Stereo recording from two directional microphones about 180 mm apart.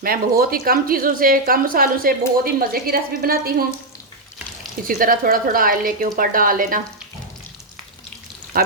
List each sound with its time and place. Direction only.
0.0 s speech: 55° right (ahead or behind)
4.9 s a woman's voice: 50° right (ahead or behind)